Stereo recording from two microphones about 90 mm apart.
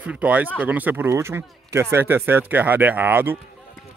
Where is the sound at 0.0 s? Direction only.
15° right (ahead or behind).